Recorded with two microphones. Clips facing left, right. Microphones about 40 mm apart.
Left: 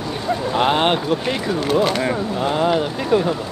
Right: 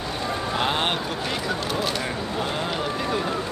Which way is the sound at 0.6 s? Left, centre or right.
Left.